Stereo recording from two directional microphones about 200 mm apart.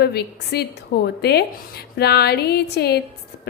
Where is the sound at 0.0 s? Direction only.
55° left (ahead or behind).